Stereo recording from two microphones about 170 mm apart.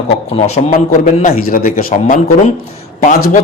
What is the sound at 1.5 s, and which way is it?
Speech, 55° left (ahead or behind).